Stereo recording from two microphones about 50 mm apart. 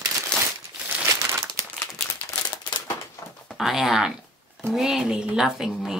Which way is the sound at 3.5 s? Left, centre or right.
Centre.